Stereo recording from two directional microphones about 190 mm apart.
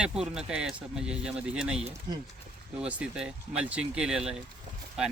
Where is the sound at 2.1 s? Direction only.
20° right (ahead or behind).